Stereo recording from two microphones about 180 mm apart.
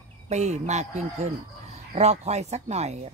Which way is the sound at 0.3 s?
40° right (ahead or behind).